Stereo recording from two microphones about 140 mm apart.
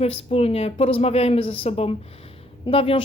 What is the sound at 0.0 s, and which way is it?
A woman's voice, 45° left (ahead or behind).